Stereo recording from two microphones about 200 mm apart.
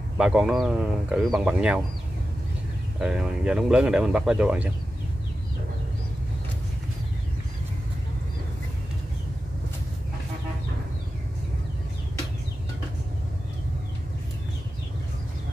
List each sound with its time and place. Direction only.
0.2 s speech: centre (ahead or behind)
3.0 s speech: 5° right (ahead or behind)